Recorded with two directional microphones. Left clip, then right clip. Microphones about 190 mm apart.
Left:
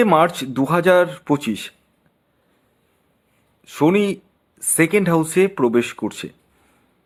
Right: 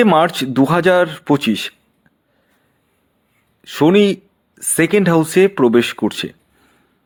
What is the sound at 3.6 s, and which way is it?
Speech, 20° right (ahead or behind).